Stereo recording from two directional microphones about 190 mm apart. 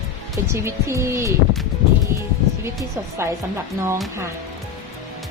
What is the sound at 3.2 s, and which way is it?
Speech, 15° right (ahead or behind).